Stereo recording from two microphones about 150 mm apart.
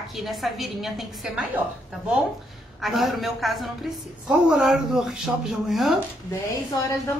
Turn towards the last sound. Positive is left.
turn(degrees=20)  # may be behind; listen again after turning